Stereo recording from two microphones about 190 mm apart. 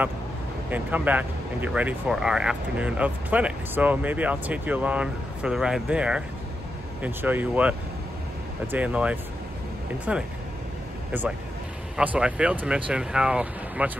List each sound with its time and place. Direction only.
0.7 s speech: 10° right (ahead or behind)
8.7 s speech: 5° right (ahead or behind)
12.0 s speech: 10° right (ahead or behind)